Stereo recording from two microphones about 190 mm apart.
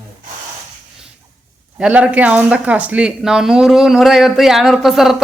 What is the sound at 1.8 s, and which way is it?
Speech, 5° right (ahead or behind).